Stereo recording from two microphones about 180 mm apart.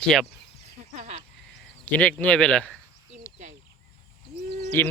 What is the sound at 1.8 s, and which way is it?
Speech, 10° left (ahead or behind).